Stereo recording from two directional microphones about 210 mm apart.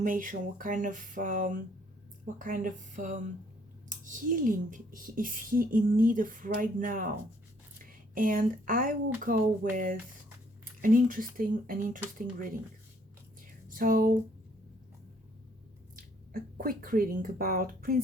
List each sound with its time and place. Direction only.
0.0 s speech: 40° right (ahead or behind)
13.7 s speech: 40° right (ahead or behind)
16.0 s speech: 45° right (ahead or behind)